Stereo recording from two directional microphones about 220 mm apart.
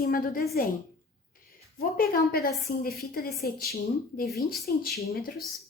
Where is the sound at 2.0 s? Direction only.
40° left (ahead or behind).